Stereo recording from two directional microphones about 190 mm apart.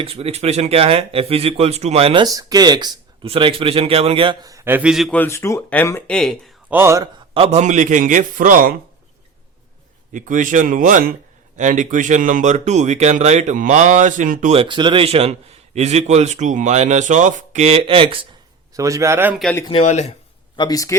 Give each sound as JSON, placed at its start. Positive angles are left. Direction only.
{"t": 0.0, "sound": "speech", "side_deg": -30}
{"t": 2.2, "sound": "speech", "side_deg": -20}
{"t": 6.7, "sound": "speech", "side_deg": -15}
{"t": 7.3, "sound": "speech", "side_deg": -35}
{"t": 10.1, "sound": "speech", "side_deg": -45}
{"t": 18.7, "sound": "speech", "side_deg": -15}
{"t": 19.4, "sound": "speech", "side_deg": 5}
{"t": 19.7, "sound": "speech", "side_deg": 35}
{"t": 20.6, "sound": "speech", "side_deg": 20}